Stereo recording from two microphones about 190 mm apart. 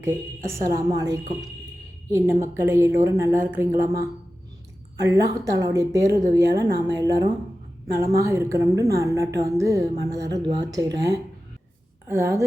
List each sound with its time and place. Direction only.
0.0 s a woman's voice: 15° right (ahead or behind)
5.0 s a woman's voice: 20° right (ahead or behind)